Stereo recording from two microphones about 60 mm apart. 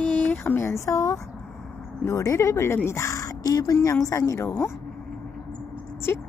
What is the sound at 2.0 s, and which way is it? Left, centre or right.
Speech, left.